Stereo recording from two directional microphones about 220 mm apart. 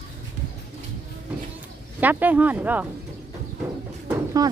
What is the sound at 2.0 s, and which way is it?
Speech, 10° right (ahead or behind).